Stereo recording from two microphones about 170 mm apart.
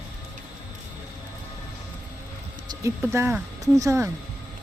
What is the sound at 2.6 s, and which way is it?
Speech, 15° right (ahead or behind).